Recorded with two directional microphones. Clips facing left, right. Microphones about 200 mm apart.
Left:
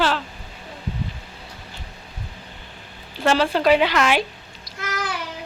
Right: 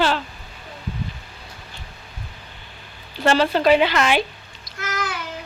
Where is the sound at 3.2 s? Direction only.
5° left (ahead or behind).